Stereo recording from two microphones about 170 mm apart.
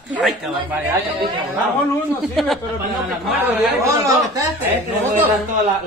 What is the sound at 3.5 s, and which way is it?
Speech, 15° right (ahead or behind).